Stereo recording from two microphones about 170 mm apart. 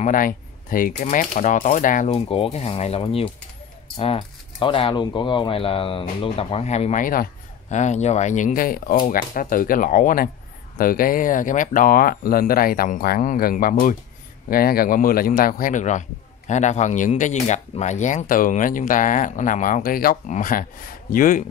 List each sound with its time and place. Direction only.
0.0 s a man's voice: 55° left (ahead or behind)
2.0 s a man's voice: 30° left (ahead or behind); by 21.5 s 50° left (ahead or behind)